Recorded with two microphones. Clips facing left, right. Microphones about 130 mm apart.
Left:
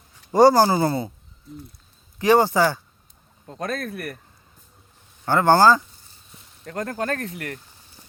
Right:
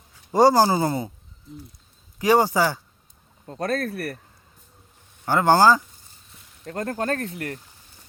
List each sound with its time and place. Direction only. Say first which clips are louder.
0.3 s speech: left 2 dB; 15° right (ahead or behind)
2.1 s speech: left 2 dB; 15° right (ahead or behind)
3.4 s speech: right 3 dB; 35° right (ahead or behind)
5.2 s speech: left 1 dB; 15° right (ahead or behind)
6.7 s speech: right 1 dB; 35° right (ahead or behind)